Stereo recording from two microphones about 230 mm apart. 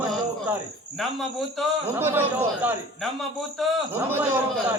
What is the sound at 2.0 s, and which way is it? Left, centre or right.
Speech, centre.